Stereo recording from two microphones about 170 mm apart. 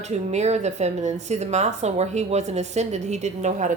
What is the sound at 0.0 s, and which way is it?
A woman's voice, 40° right (ahead or behind).